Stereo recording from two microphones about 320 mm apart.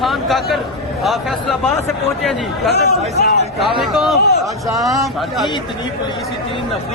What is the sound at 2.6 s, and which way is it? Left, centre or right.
Speech, left.